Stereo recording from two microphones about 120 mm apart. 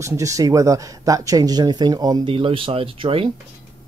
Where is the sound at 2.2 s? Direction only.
50° right (ahead or behind).